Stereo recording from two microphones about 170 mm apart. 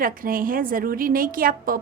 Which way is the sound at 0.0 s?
55° right (ahead or behind).